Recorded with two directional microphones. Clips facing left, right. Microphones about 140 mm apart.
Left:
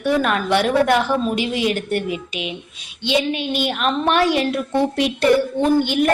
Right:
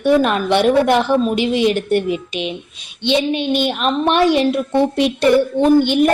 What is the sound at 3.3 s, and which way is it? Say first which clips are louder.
A woman's voice: right 4 dB; 25° right (ahead or behind).